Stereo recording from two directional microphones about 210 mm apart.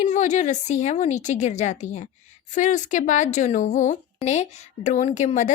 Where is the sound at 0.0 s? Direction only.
35° left (ahead or behind).